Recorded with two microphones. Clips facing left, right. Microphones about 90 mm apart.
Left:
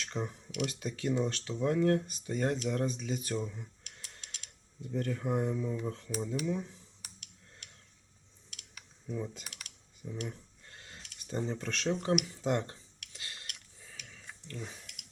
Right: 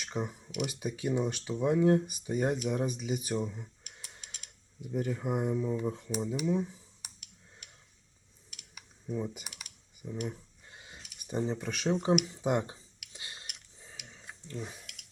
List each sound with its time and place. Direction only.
0.0 s speech: 15° right (ahead or behind)
8.7 s typing: 10° right (ahead or behind)
12.2 s a sound: 15° right (ahead or behind)